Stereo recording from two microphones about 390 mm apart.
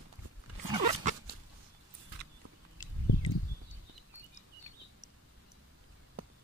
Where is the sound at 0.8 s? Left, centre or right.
Right.